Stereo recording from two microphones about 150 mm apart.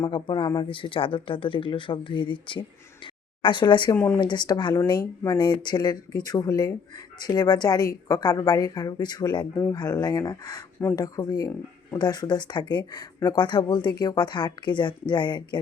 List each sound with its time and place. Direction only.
0.0 s speech: 30° left (ahead or behind)
3.9 s speech: 15° left (ahead or behind)
4.2 s speech: 30° left (ahead or behind)